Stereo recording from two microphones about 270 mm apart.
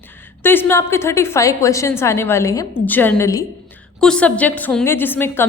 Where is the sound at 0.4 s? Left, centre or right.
Centre.